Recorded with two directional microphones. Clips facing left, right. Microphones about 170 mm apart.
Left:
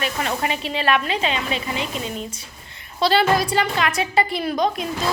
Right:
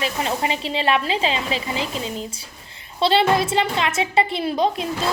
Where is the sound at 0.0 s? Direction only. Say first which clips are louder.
Right 1 dB; 25° right (ahead or behind).